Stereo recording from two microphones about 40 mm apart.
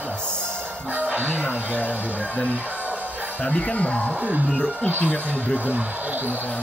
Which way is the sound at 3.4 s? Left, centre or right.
Left.